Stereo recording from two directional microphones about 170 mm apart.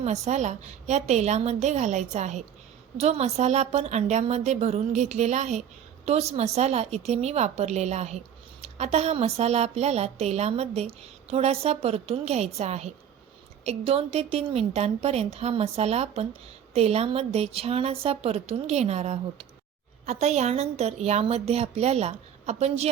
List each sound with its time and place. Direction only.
0.0 s a woman's voice: 40° right (ahead or behind)